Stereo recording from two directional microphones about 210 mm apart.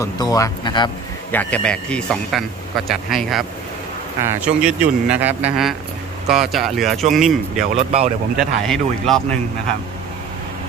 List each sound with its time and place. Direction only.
0.0 s speech: 15° left (ahead or behind)
1.3 s a man's voice: 5° left (ahead or behind)
7.7 s speech: 30° right (ahead or behind)
8.4 s a man's voice: centre (ahead or behind)